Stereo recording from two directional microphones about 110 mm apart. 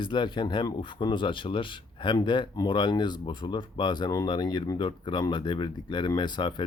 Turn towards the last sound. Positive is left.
turn(degrees=45)  # may be behind; listen again after turning